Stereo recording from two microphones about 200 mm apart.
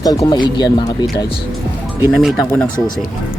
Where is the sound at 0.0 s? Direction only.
20° left (ahead or behind).